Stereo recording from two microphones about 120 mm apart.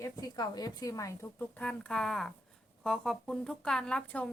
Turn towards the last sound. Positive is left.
turn(degrees=10)  # may be behind; listen again after turning